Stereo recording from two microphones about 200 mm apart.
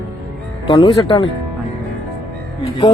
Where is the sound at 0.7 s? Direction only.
25° left (ahead or behind).